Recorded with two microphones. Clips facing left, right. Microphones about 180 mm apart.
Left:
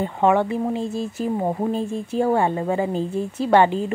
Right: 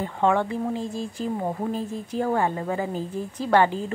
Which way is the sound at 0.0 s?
20° left (ahead or behind).